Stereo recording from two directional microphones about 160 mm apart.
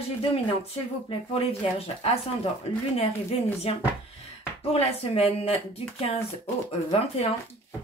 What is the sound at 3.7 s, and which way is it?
Speech, 35° left (ahead or behind).